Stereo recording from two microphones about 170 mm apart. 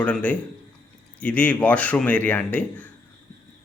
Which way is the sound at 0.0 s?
5° left (ahead or behind).